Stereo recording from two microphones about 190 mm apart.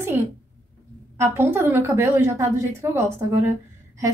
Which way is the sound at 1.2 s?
15° right (ahead or behind).